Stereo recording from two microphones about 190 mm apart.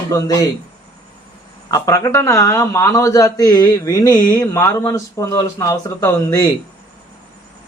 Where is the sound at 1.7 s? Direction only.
20° left (ahead or behind).